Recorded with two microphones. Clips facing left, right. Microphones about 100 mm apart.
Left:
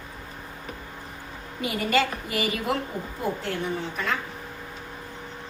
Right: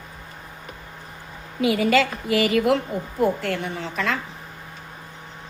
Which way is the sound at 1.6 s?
90° right.